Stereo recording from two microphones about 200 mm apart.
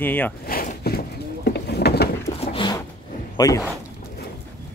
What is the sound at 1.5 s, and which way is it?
Vehicle, 55° left (ahead or behind).